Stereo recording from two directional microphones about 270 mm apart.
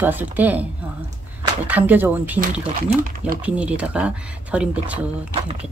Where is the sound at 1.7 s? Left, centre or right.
Centre.